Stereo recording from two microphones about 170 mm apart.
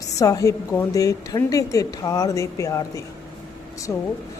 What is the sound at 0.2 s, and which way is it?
A woman's voice, 20° left (ahead or behind).